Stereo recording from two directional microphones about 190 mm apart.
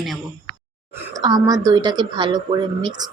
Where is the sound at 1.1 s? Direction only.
20° right (ahead or behind).